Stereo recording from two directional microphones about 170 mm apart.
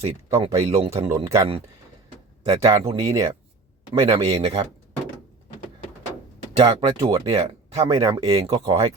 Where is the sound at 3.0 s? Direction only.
20° right (ahead or behind).